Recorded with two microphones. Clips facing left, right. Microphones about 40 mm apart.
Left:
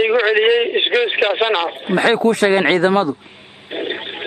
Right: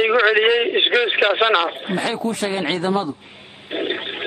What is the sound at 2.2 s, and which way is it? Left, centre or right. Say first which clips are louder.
Speech: left 8 dB; left.